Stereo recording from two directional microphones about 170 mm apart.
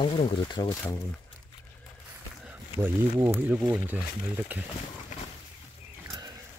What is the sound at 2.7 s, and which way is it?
Speech, 15° right (ahead or behind).